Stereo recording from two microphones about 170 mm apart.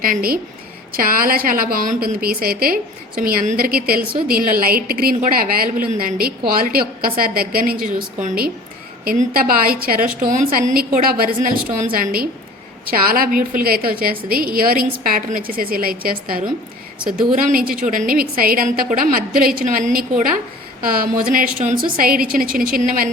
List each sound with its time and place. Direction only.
0.0 s a woman's voice: 60° right (ahead or behind)